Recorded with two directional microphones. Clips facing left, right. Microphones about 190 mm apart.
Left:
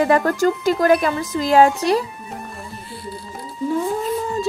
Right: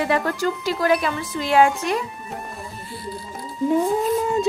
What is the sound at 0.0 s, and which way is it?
Speech, 45° left (ahead or behind).